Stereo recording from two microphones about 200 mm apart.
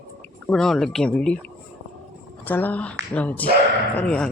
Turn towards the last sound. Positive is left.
turn(degrees=5)  # may be behind; listen again after turning